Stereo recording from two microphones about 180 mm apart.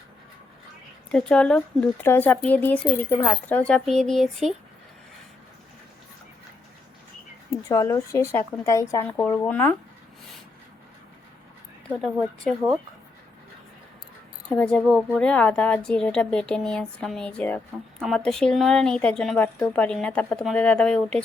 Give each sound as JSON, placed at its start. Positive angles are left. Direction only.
{"t": 1.1, "sound": "speech", "side_deg": 5}
{"t": 7.7, "sound": "speech", "side_deg": 20}
{"t": 14.5, "sound": "speech", "side_deg": 5}